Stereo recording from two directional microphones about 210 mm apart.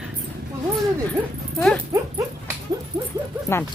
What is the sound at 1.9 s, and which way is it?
Dog, 15° right (ahead or behind).